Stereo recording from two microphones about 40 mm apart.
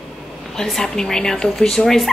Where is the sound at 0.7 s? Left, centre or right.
Centre.